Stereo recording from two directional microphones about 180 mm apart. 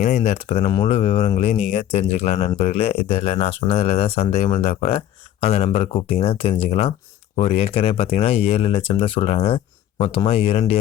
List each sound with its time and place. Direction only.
0.0 s speech: 40° left (ahead or behind)
0.6 s speech: 25° left (ahead or behind)